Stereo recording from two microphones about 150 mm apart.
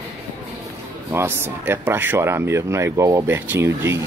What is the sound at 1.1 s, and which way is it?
Speech, 15° right (ahead or behind).